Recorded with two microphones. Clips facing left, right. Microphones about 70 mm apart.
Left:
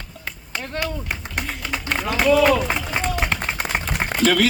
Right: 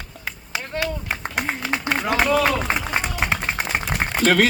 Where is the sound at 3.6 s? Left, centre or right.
Centre.